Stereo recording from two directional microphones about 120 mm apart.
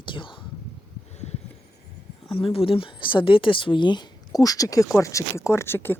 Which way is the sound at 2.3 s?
50° left (ahead or behind).